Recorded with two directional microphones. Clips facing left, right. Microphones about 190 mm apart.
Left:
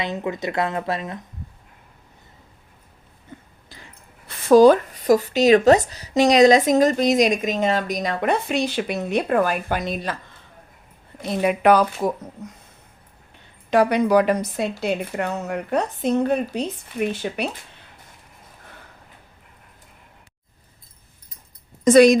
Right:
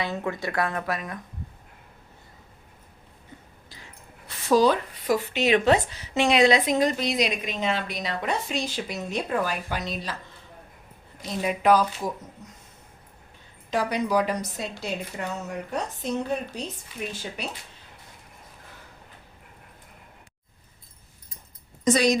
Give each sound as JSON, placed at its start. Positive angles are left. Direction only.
{"t": 0.0, "sound": "speech", "side_deg": 20}
{"t": 4.4, "sound": "speech", "side_deg": 50}
{"t": 11.2, "sound": "speech", "side_deg": 65}
{"t": 13.7, "sound": "speech", "side_deg": 60}
{"t": 21.8, "sound": "speech", "side_deg": 55}